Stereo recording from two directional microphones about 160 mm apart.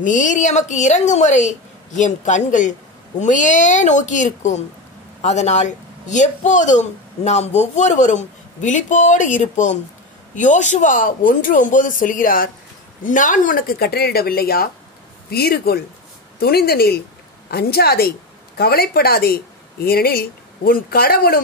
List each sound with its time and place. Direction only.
0.0 s a man's voice: 50° left (ahead or behind); by 21.4 s 70° left (ahead or behind)